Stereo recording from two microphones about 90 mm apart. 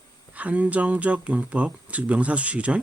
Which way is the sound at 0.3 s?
15° right (ahead or behind).